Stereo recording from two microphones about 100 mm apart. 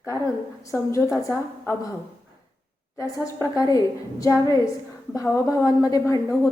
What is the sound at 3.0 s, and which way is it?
A woman's voice, 35° left (ahead or behind).